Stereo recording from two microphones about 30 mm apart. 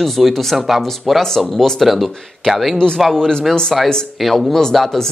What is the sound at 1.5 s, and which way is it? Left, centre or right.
Speech, centre.